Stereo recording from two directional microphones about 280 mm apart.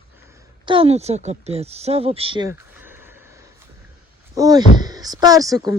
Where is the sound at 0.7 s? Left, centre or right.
Centre.